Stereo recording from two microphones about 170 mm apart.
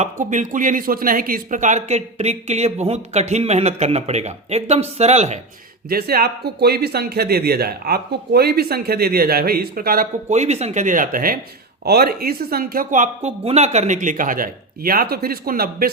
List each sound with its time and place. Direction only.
0.0 s speech: 45° right (ahead or behind)
5.9 s speech: 65° right (ahead or behind)
10.2 s speech: 40° right (ahead or behind); by 15.9 s 60° right (ahead or behind)